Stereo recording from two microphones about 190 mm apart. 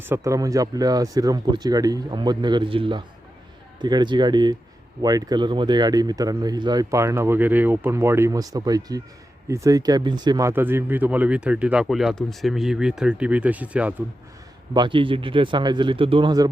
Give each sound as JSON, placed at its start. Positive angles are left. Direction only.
{"t": 0.0, "sound": "speech", "side_deg": -15}
{"t": 14.7, "sound": "speech", "side_deg": -25}